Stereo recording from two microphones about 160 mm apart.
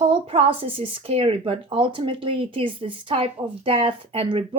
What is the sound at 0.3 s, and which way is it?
Speech, 35° right (ahead or behind).